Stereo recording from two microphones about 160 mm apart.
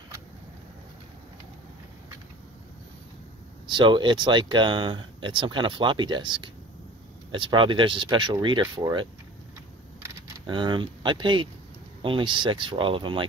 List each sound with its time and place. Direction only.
3.6 s speech: 30° right (ahead or behind)
10.4 s speech: 30° right (ahead or behind)